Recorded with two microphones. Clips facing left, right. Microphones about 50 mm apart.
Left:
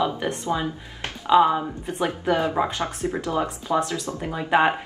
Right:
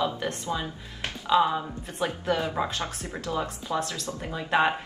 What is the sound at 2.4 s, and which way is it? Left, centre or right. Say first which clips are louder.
Speech: left 5 dB; centre.